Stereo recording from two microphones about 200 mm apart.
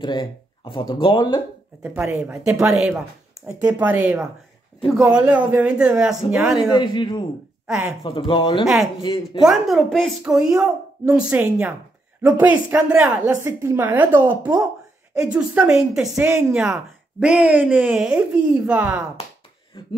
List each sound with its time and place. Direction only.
0.0 s speech: 25° left (ahead or behind)
1.8 s speech: 10° right (ahead or behind)
6.7 s speech: 25° left (ahead or behind)
9.4 s speech: centre (ahead or behind)
14.4 s speech: 20° right (ahead or behind)
15.2 s speech: 5° right (ahead or behind)